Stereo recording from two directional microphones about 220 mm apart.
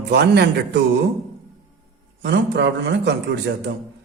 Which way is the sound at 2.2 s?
55° right (ahead or behind).